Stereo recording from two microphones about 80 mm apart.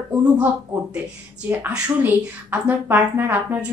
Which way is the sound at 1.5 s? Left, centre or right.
Right.